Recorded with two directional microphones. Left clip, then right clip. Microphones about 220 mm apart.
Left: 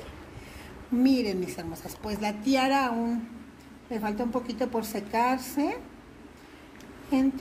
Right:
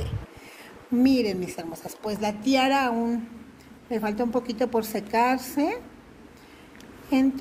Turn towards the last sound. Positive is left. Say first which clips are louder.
# right 3 dB
turn(degrees=-25)  # may be behind; listen again after turning